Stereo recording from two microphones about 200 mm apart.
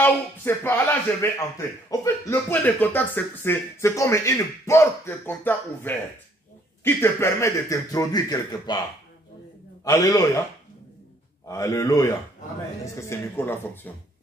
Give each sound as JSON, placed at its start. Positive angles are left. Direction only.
{"t": 0.0, "sound": "speech", "side_deg": 10}
{"t": 9.8, "sound": "speech", "side_deg": 15}
{"t": 11.4, "sound": "speech", "side_deg": 15}